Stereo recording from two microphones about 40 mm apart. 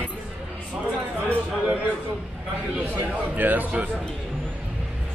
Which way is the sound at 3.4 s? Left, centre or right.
Right.